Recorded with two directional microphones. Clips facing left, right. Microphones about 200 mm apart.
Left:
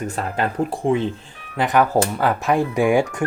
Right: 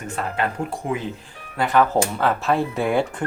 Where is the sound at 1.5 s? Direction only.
15° left (ahead or behind).